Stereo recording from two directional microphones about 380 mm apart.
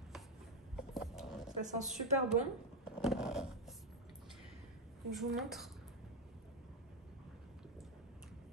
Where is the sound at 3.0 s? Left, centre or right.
Centre.